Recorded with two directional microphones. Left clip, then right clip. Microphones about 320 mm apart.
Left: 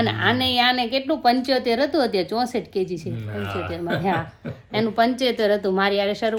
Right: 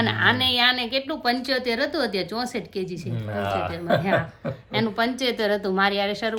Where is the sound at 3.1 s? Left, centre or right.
Centre.